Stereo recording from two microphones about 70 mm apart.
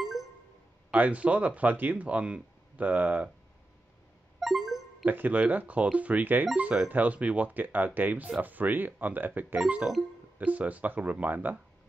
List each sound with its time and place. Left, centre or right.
0.0 s a sound: centre
0.9 s speech: right
4.4 s music: centre
5.0 s speech: right